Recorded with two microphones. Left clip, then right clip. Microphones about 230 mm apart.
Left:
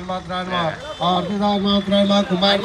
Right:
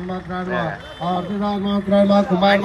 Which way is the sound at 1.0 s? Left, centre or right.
Left.